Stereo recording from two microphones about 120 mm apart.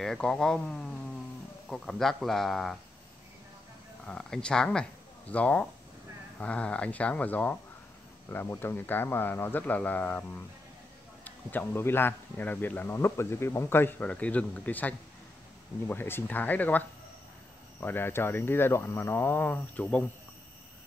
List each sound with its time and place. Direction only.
0.0 s speech: 5° left (ahead or behind)
4.0 s speech: 5° left (ahead or behind)